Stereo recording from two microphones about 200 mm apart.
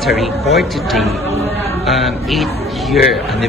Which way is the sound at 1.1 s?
30° right (ahead or behind).